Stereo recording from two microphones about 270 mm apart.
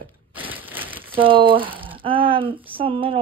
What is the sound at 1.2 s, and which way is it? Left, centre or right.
Speech, centre.